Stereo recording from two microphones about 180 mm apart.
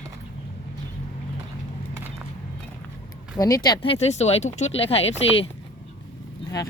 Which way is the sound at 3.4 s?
20° left (ahead or behind).